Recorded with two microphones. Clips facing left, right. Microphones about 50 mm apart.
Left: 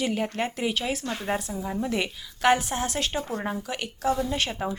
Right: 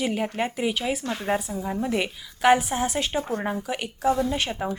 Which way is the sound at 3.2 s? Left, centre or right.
Right.